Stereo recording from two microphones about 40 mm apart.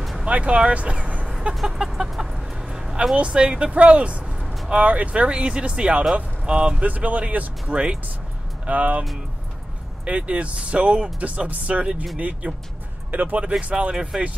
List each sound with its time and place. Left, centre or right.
0.2 s speech: right
1.5 s chicken: centre
2.6 s a sound: centre
3.2 s speech: right
4.4 s vehicle: centre
4.6 s speech: right
6.8 s speech: right
10.0 s speech: right
13.4 s speech: right